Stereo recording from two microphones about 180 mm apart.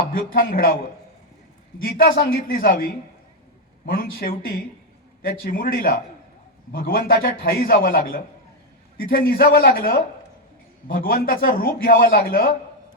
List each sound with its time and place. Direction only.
0.3 s a man's voice: 55° left (ahead or behind)
1.8 s a man's voice: 55° left (ahead or behind)